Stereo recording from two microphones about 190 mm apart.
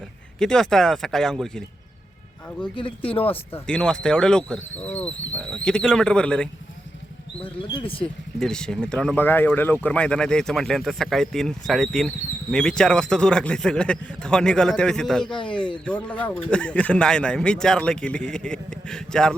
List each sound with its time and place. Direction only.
0.3 s speech: 5° left (ahead or behind)
2.7 s speech: 30° left (ahead or behind)
3.5 s speech: 5° left (ahead or behind)
7.4 s speech: 25° left (ahead or behind)
8.4 s speech: 5° left (ahead or behind)
15.4 s speech: 25° left (ahead or behind)
15.9 s speech: 5° left (ahead or behind)